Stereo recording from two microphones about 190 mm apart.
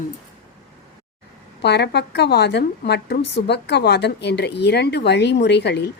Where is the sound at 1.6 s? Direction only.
60° left (ahead or behind).